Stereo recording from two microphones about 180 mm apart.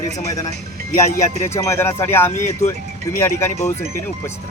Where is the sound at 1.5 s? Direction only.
15° left (ahead or behind).